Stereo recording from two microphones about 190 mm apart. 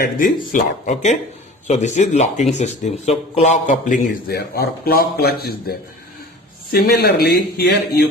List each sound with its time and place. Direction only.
0.5 s a man's voice: 40° left (ahead or behind); by 8.0 s 60° left (ahead or behind)